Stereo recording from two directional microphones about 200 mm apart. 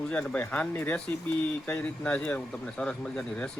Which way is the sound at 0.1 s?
5° left (ahead or behind).